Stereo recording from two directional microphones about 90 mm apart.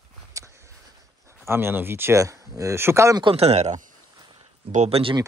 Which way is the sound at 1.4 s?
25° right (ahead or behind).